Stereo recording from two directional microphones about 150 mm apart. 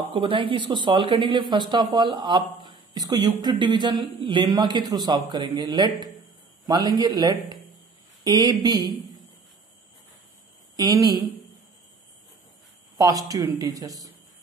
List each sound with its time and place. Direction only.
0.1 s speech: 35° right (ahead or behind)
10.8 s speech: 25° right (ahead or behind)
12.9 s speech: 25° right (ahead or behind)